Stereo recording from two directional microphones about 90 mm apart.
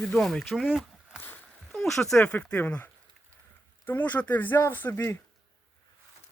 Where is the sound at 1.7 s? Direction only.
5° left (ahead or behind); by 5.1 s 25° left (ahead or behind).